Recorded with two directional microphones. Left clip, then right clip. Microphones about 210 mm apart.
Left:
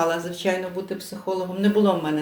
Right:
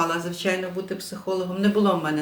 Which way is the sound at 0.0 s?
20° right (ahead or behind).